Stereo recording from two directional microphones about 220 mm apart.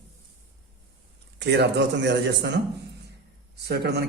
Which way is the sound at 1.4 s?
50° right (ahead or behind).